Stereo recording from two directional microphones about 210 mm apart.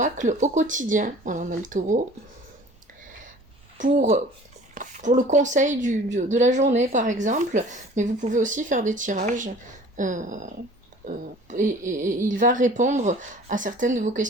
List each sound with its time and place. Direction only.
0.0 s a woman's voice: 35° right (ahead or behind)
3.8 s a woman's voice: 40° right (ahead or behind)